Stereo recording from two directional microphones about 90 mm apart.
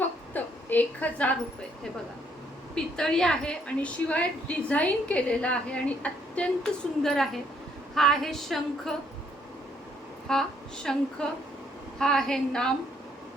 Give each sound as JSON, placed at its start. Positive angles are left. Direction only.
{"t": 0.3, "sound": "a woman's voice", "side_deg": 20}
{"t": 2.7, "sound": "a woman's voice", "side_deg": 5}
{"t": 7.9, "sound": "a sound", "side_deg": 5}
{"t": 10.3, "sound": "a woman's voice", "side_deg": 5}
{"t": 10.9, "sound": "a sound", "side_deg": 5}
{"t": 11.9, "sound": "a woman's voice", "side_deg": 5}